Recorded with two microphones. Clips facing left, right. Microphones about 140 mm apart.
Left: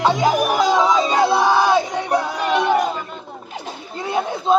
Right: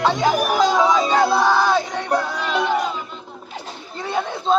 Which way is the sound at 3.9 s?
Centre (ahead or behind).